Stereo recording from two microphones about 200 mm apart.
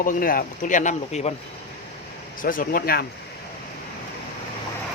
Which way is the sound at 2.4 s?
45° left (ahead or behind).